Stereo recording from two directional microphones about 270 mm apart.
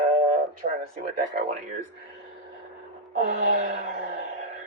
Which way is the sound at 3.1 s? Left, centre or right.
Right.